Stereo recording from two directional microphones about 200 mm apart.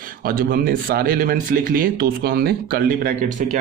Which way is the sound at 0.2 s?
45° right (ahead or behind).